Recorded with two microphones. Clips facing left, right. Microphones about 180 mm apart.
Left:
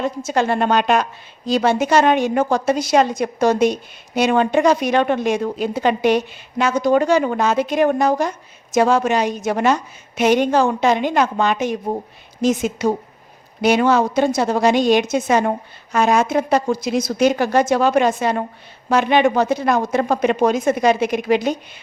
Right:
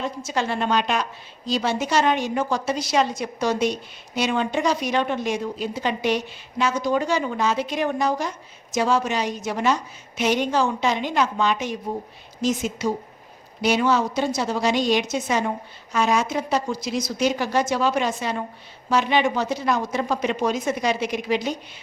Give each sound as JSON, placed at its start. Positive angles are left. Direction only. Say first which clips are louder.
{"t": 0.0, "sound": "a woman's voice", "louder": "left 6 dB", "side_deg": 50}